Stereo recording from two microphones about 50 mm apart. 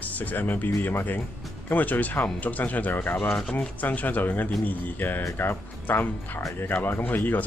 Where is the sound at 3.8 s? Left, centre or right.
Left.